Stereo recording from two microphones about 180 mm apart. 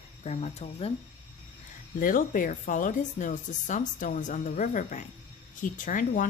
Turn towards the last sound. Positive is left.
turn(degrees=45)  # may be behind; listen again after turning